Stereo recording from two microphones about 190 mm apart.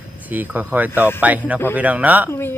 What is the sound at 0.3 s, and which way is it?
Speech, 10° right (ahead or behind).